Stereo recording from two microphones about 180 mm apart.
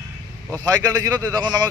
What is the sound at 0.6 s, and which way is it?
A man's voice, 20° right (ahead or behind).